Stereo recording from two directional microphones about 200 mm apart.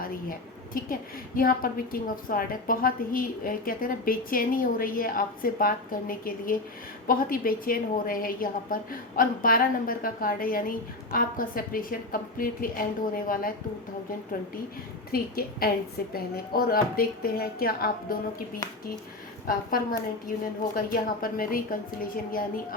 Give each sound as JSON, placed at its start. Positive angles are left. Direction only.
{"t": 0.0, "sound": "a woman's voice", "side_deg": 45}
{"t": 15.1, "sound": "a woman's voice", "side_deg": 50}